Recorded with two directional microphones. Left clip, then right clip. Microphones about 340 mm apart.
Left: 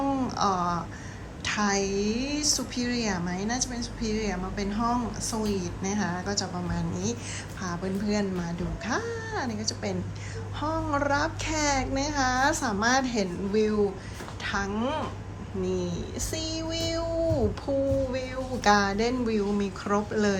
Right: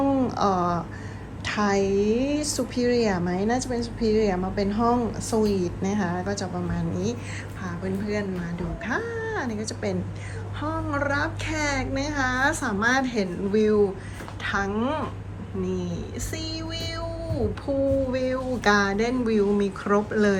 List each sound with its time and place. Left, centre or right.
0.1 s a sound: centre
1.5 s a woman's voice: centre
16.5 s music: centre
17.7 s a woman's voice: centre